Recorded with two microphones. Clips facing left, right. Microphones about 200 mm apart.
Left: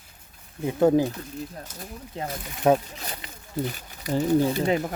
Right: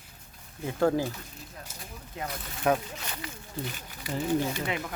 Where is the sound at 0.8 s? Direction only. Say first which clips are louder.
Left 6 dB; 20° left (ahead or behind).